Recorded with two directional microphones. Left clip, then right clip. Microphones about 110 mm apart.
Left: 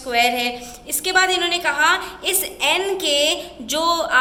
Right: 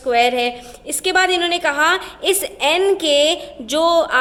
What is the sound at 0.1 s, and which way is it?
A woman's voice, 30° right (ahead or behind).